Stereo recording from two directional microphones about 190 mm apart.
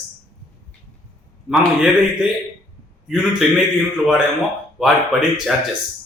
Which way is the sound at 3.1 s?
5° right (ahead or behind).